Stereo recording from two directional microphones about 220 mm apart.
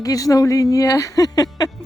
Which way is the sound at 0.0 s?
15° left (ahead or behind).